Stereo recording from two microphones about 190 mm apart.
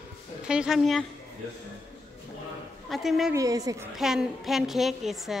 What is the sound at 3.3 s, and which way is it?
Speech, 20° right (ahead or behind).